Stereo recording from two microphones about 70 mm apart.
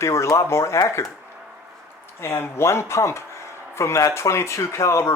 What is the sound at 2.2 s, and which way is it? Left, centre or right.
Speech, left.